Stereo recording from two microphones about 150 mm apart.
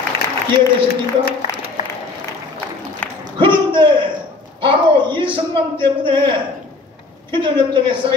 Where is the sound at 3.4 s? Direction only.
35° right (ahead or behind).